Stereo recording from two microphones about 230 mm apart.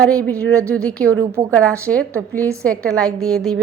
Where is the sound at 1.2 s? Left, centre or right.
Centre.